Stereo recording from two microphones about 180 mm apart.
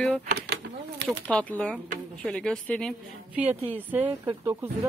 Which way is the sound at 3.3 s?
10° right (ahead or behind).